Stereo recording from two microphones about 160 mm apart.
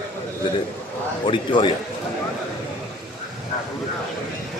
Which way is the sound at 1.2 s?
30° left (ahead or behind).